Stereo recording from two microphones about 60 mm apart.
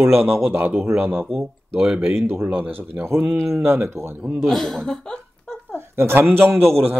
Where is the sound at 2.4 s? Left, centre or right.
Right.